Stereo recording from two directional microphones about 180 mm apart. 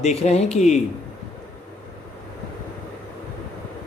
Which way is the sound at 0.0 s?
35° left (ahead or behind).